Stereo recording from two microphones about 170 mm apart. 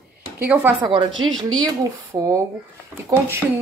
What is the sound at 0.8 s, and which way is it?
A woman's voice, 25° right (ahead or behind).